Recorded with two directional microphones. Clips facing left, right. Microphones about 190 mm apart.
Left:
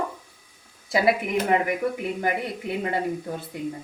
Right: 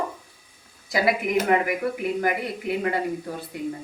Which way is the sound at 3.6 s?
20° left (ahead or behind).